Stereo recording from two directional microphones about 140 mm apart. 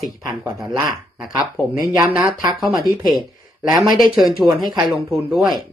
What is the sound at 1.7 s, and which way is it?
Speech, 30° right (ahead or behind).